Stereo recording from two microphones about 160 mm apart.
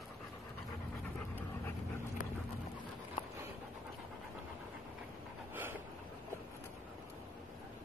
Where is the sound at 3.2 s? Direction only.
30° left (ahead or behind).